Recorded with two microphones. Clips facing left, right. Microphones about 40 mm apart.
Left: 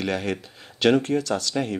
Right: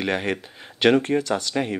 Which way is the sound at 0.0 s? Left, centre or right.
Right.